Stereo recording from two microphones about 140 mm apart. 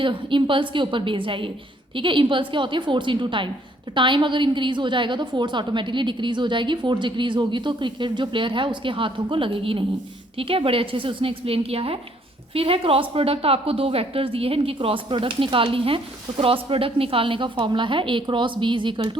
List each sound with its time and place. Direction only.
0.0 s a woman's voice: 35° right (ahead or behind)